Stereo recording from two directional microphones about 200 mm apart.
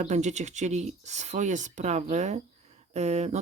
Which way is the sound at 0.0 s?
35° right (ahead or behind).